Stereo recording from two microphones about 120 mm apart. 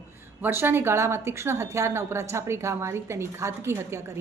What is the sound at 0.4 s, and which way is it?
A woman's voice, 20° right (ahead or behind).